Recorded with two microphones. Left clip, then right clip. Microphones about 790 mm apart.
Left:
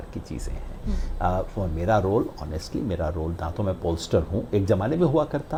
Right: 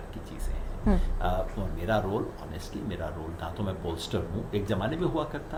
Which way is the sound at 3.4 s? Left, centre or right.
Left.